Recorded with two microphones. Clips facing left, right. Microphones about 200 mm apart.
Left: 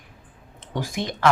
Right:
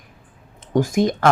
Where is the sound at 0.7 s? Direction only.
45° right (ahead or behind).